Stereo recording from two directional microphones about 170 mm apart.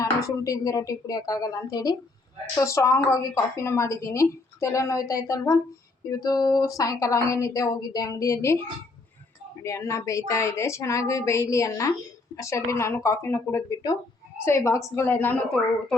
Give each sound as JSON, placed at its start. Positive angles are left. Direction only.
{"t": 0.0, "sound": "a woman's voice", "side_deg": 20}
{"t": 9.6, "sound": "a woman's voice", "side_deg": 20}